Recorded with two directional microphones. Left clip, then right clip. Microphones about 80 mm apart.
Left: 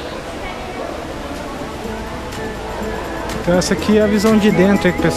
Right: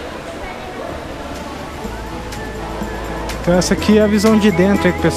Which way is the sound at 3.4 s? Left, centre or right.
Right.